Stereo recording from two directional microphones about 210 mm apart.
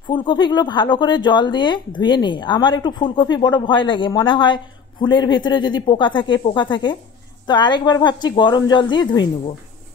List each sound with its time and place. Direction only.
0.1 s speech: 20° left (ahead or behind)